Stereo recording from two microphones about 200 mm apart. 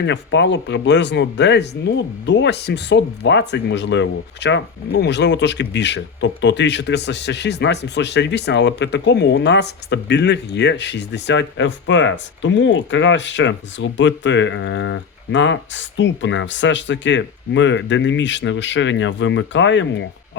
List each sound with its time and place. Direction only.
0.0 s speech: 60° left (ahead or behind)